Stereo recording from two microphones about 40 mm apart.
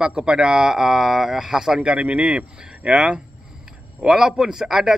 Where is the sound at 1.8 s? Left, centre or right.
Right.